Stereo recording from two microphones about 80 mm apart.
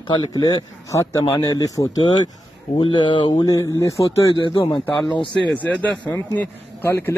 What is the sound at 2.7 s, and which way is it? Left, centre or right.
Speech, left.